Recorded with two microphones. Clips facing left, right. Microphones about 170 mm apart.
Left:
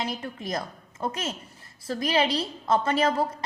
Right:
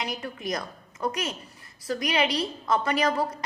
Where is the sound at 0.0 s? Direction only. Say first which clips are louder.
Even; 30° left (ahead or behind).